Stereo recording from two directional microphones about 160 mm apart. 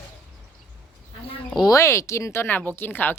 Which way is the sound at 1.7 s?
20° left (ahead or behind).